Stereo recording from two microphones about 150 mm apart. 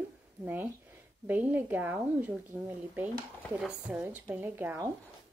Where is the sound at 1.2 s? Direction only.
10° right (ahead or behind).